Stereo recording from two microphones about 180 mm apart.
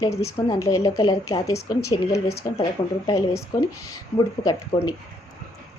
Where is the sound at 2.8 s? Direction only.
30° left (ahead or behind).